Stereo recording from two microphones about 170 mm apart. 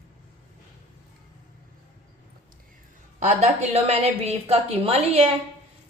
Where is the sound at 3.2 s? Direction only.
40° right (ahead or behind).